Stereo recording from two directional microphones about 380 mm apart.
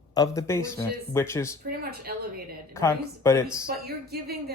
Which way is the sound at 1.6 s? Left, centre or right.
Right.